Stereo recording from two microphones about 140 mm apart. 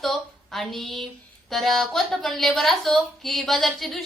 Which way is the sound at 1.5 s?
Centre (ahead or behind).